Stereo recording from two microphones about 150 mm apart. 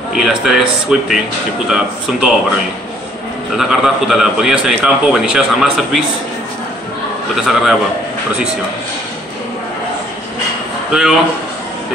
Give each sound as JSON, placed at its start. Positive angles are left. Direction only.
{"t": 0.1, "sound": "a man's voice", "side_deg": 0}
{"t": 3.5, "sound": "a man's voice", "side_deg": 0}
{"t": 7.3, "sound": "a man's voice", "side_deg": 0}
{"t": 10.9, "sound": "speech", "side_deg": -5}